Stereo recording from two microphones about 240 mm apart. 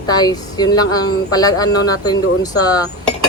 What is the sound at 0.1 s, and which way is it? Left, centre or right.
A woman's voice, centre.